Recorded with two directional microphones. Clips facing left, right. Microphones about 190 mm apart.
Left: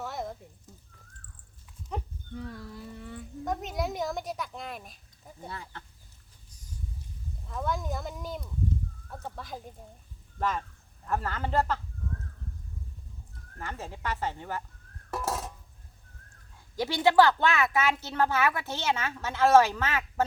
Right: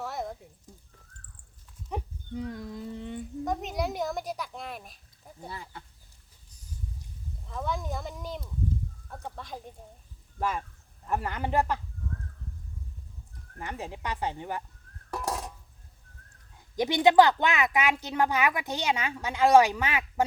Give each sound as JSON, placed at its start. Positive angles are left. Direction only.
{"t": 0.0, "sound": "a sound", "side_deg": 0}
{"t": 0.7, "sound": "a sound", "side_deg": -10}
{"t": 1.9, "sound": "dog", "side_deg": -15}
{"t": 3.4, "sound": "a child's voice", "side_deg": 0}
{"t": 7.4, "sound": "a child's voice", "side_deg": 0}
{"t": 10.3, "sound": "a woman's voice", "side_deg": -10}
{"t": 13.6, "sound": "a woman's voice", "side_deg": -15}
{"t": 15.1, "sound": "dishes", "side_deg": 0}
{"t": 16.7, "sound": "a woman's voice", "side_deg": -20}